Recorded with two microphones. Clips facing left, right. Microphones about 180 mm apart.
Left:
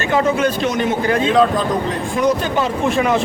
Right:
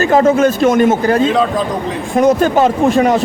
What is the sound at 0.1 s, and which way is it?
Speech, 45° right (ahead or behind).